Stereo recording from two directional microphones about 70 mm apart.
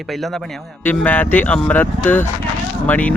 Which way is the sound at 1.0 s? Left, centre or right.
Left.